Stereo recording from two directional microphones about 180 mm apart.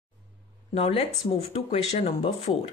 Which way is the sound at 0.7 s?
30° left (ahead or behind).